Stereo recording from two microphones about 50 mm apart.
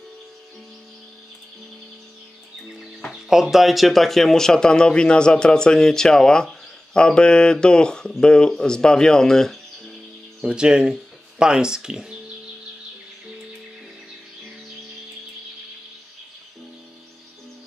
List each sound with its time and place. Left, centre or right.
3.1 s speech: centre
10.4 s speech: centre